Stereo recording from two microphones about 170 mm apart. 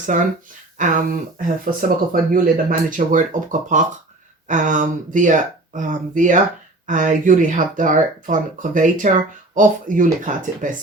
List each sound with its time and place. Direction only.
0.1 s speech: 50° right (ahead or behind)